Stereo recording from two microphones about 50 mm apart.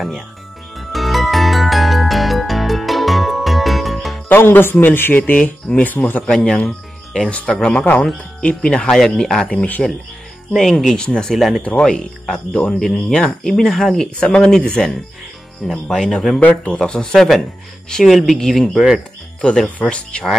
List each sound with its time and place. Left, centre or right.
0.7 s music: centre
4.3 s speech: left
6.2 s speech: left
8.6 s speech: centre
10.5 s speech: centre
11.0 s speech: centre
12.7 s speech: centre
14.2 s speech: left
15.6 s speech: centre
16.3 s speech: left
16.8 s speech: centre
19.8 s speech: left